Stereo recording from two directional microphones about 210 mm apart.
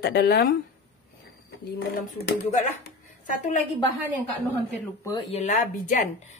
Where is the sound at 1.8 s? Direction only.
50° left (ahead or behind).